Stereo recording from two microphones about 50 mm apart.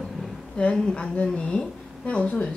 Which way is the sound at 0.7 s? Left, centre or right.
Centre.